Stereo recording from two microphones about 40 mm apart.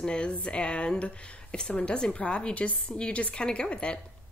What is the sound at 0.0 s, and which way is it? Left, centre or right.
A woman's voice, left.